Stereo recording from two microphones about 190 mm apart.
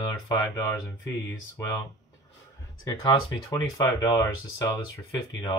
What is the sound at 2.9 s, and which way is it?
Speech, 20° left (ahead or behind).